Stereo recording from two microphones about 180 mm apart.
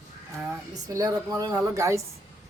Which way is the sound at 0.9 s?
20° right (ahead or behind).